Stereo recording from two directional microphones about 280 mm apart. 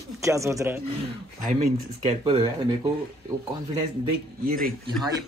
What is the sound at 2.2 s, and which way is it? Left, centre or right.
Speech, centre.